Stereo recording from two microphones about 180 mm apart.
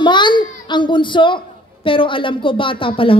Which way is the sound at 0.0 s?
25° left (ahead or behind).